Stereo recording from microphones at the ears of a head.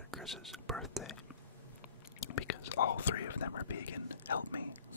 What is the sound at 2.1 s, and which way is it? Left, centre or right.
Whispering, left.